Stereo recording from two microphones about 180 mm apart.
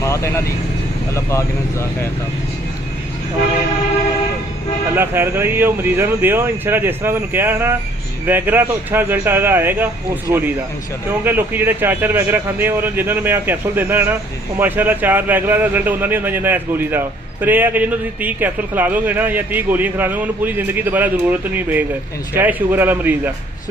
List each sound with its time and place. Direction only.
0.0 s speech: 15° left (ahead or behind)
4.9 s speech: 10° right (ahead or behind)
11.2 s speech: 10° right (ahead or behind)